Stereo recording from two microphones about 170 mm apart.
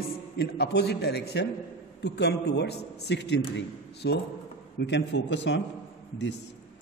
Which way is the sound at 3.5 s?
75° left (ahead or behind).